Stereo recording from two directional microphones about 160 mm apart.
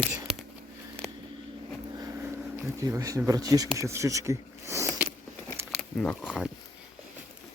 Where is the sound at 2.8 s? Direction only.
20° right (ahead or behind).